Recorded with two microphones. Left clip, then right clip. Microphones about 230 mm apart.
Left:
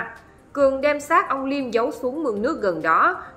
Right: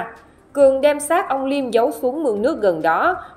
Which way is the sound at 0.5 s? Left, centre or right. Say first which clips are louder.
Right 5 dB; centre.